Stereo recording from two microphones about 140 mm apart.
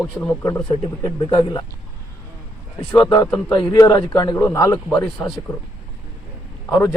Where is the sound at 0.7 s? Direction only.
35° left (ahead or behind).